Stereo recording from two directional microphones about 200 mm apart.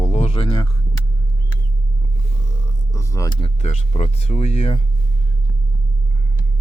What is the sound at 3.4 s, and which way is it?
Speech, 35° left (ahead or behind).